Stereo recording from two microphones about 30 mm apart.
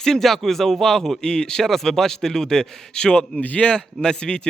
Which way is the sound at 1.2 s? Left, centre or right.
Left.